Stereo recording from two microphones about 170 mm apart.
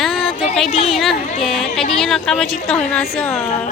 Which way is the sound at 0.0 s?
Centre (ahead or behind).